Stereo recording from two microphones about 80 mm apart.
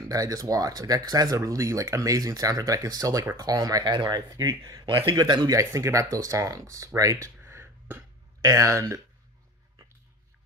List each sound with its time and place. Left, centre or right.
0.1 s speech: right
3.8 s speech: right
4.3 s speech: right
5.1 s speech: right
5.5 s speech: right
7.0 s a sound: right
8.4 s speech: right